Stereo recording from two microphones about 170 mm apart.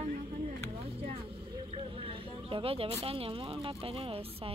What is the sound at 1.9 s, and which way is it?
Speech, 35° right (ahead or behind).